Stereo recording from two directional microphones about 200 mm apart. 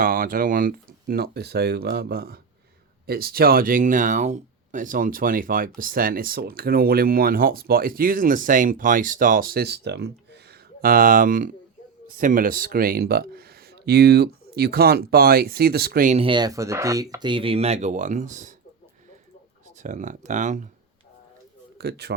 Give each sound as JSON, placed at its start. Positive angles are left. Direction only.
{"t": 0.0, "sound": "speech", "side_deg": -45}
{"t": 16.2, "sound": "speech", "side_deg": -20}
{"t": 19.8, "sound": "speech", "side_deg": -40}
{"t": 21.8, "sound": "a man's voice", "side_deg": -55}